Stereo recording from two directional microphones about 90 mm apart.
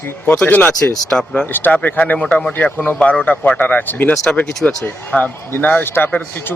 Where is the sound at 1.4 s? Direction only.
20° left (ahead or behind).